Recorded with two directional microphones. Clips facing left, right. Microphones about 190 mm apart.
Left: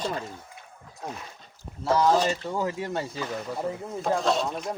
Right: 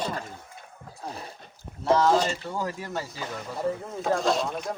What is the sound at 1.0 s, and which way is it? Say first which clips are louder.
Speech: even; 35° right (ahead or behind).